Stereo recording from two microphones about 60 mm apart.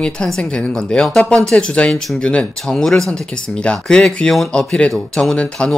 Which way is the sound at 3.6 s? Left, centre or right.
Centre.